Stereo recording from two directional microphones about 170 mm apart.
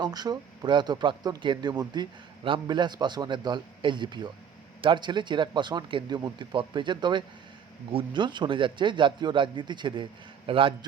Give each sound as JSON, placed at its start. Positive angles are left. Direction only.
{"t": 0.0, "sound": "speech", "side_deg": -25}